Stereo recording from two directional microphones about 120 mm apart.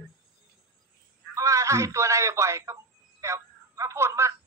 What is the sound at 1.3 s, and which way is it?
Telephone, 25° right (ahead or behind).